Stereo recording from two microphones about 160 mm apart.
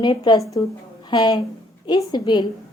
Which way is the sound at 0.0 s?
25° left (ahead or behind).